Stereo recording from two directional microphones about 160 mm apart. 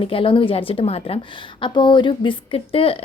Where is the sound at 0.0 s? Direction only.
35° left (ahead or behind).